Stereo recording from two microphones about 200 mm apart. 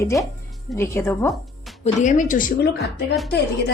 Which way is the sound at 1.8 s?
35° left (ahead or behind).